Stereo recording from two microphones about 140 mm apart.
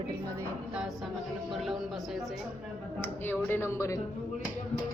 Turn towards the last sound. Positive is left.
turn(degrees=20)  # may be behind; listen again after turning